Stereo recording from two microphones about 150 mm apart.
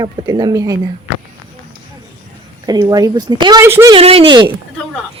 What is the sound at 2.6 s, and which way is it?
Speech, 25° right (ahead or behind).